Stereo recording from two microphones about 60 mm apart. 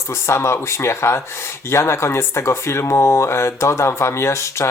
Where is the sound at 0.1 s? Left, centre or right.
Left.